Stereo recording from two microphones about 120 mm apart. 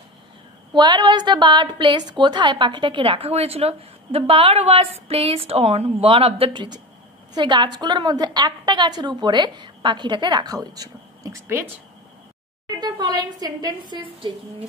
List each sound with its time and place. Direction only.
0.7 s a woman's voice: 40° right (ahead or behind); by 11.7 s 20° right (ahead or behind)
12.8 s a woman's voice: 35° right (ahead or behind)